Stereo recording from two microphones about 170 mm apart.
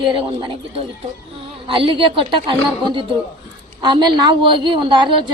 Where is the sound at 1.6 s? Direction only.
30° right (ahead or behind).